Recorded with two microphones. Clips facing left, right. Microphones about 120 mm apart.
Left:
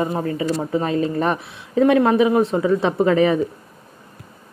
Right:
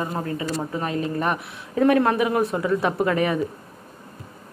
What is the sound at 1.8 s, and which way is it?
Speech, 15° left (ahead or behind).